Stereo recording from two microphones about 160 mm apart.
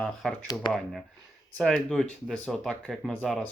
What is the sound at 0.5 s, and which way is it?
Speech, centre (ahead or behind).